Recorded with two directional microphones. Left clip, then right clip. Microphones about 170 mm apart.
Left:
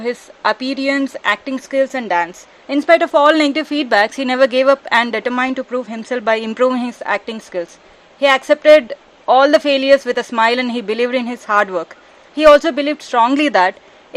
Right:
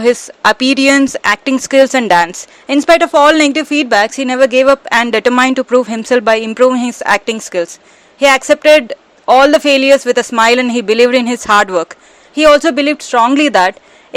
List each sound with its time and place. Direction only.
0.0 s speech: 30° right (ahead or behind)
6.3 s speech: 15° right (ahead or behind)